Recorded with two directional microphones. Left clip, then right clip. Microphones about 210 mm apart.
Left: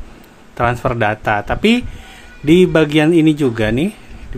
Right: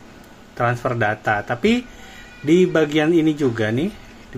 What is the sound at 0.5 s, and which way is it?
A man's voice, 20° left (ahead or behind).